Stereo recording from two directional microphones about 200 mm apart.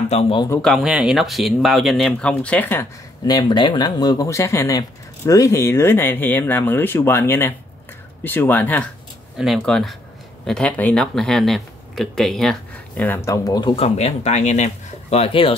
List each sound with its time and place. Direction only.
0.1 s a man's voice: 30° left (ahead or behind)
0.6 s speech: centre (ahead or behind)
3.3 s speech: 20° left (ahead or behind)